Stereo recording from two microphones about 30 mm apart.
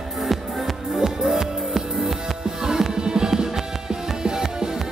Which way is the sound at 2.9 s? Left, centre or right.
Right.